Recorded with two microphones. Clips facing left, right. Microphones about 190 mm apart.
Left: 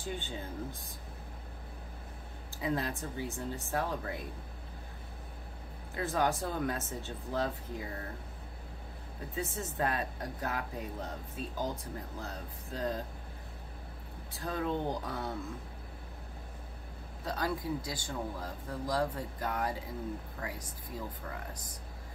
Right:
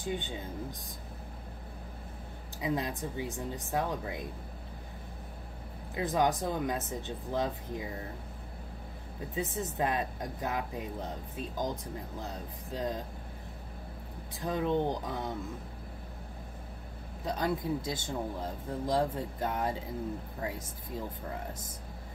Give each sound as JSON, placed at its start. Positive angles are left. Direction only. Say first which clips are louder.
{"t": 0.0, "sound": "speech", "louder": "right 3 dB", "side_deg": -15}
{"t": 2.6, "sound": "speech", "louder": "right 1 dB", "side_deg": -15}
{"t": 5.9, "sound": "speech", "louder": "right 3 dB", "side_deg": -15}
{"t": 9.3, "sound": "speech", "louder": "right 3 dB", "side_deg": -20}
{"t": 14.4, "sound": "speech", "louder": "right 4 dB", "side_deg": -20}
{"t": 17.2, "sound": "speech", "louder": "right 3 dB", "side_deg": -20}